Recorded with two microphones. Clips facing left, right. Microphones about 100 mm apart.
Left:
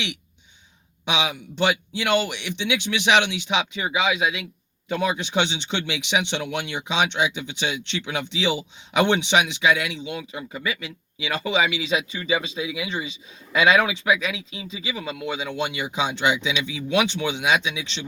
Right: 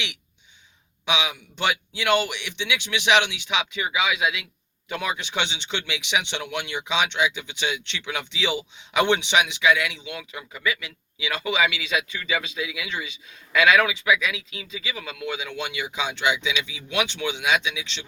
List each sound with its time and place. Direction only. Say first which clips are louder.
1.0 s speech: left 1 dB; 30° left (ahead or behind)